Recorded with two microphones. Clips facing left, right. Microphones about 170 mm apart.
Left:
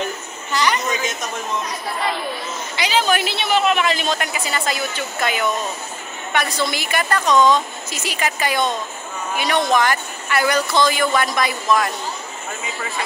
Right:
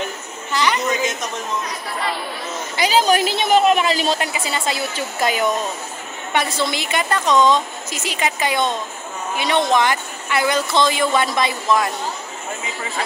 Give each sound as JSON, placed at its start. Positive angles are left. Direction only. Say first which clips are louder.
{"t": 2.8, "sound": "a woman's voice", "louder": "right 3 dB", "side_deg": -40}
{"t": 6.3, "sound": "speech", "louder": "right 1 dB", "side_deg": -25}